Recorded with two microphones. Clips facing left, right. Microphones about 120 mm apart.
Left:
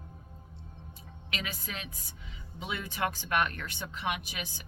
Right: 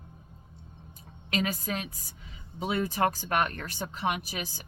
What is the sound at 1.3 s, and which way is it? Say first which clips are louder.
Speech: right 9 dB; 40° right (ahead or behind).